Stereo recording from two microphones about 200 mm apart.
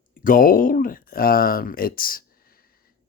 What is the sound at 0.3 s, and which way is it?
Speech, 45° left (ahead or behind).